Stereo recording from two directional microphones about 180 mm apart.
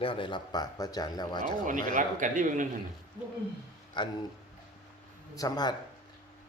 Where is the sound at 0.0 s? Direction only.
30° left (ahead or behind).